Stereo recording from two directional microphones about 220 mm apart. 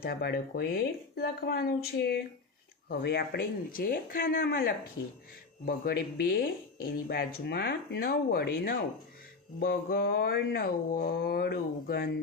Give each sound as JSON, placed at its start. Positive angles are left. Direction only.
{"t": 0.0, "sound": "speech", "side_deg": 45}